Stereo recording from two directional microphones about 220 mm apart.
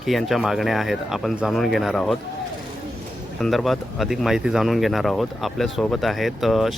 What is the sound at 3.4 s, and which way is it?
Speech, centre (ahead or behind).